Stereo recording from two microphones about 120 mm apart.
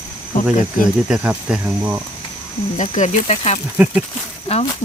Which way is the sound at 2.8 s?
75° left (ahead or behind).